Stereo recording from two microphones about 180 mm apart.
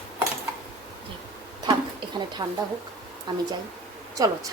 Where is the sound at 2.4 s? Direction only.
20° right (ahead or behind).